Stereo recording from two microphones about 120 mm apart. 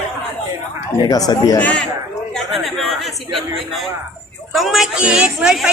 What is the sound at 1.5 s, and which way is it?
Speech, 10° left (ahead or behind).